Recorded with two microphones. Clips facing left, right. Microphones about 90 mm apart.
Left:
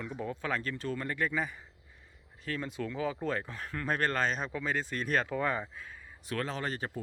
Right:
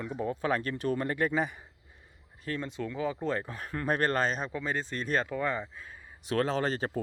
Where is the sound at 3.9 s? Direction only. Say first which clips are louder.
Right 3 dB; 40° right (ahead or behind).